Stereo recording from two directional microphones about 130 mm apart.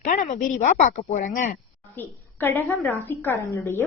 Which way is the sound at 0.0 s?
85° left.